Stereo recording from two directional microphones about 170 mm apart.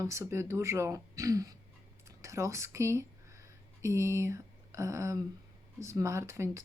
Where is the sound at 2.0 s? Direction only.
15° right (ahead or behind).